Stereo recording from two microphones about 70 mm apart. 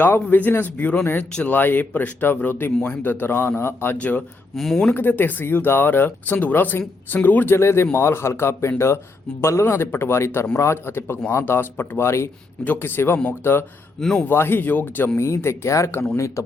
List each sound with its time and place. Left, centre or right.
0.0 s speech: left
2.7 s a man's voice: centre
3.0 s speech: left
3.9 s speech: left
4.5 s speech: centre
4.9 s speech: left
12.6 s speech: left
14.0 s a man's voice: centre
14.3 s speech: left
15.2 s a man's voice: left